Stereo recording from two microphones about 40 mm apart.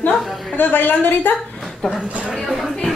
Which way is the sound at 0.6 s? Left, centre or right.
Left.